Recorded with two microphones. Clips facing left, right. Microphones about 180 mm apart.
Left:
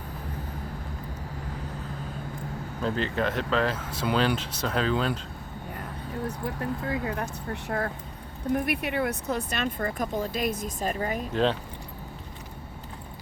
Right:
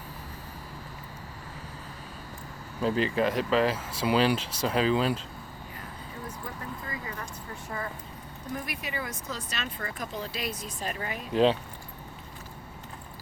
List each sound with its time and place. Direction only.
2.8 s speech: 5° right (ahead or behind)
6.2 s speech: 70° left (ahead or behind); by 11.3 s 45° left (ahead or behind)